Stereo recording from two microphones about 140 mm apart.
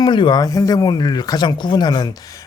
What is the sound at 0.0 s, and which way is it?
Speech, 35° left (ahead or behind).